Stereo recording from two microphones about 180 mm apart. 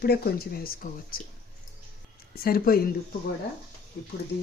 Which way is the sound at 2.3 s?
55° left (ahead or behind).